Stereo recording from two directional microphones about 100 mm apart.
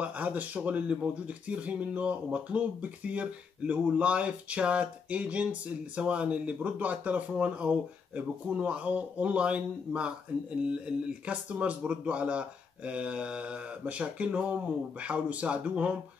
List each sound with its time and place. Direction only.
0.0 s speech: 15° right (ahead or behind)